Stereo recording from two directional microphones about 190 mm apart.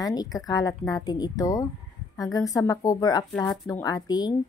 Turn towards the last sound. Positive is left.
turn(degrees=20)  # may be behind; listen again after turning